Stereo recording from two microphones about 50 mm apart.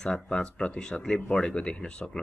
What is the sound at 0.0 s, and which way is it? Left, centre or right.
Speech, centre.